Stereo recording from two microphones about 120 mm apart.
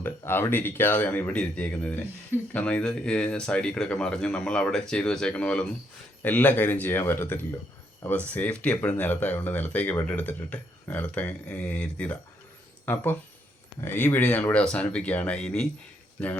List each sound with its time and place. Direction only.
0.0 s speech: 20° left (ahead or behind)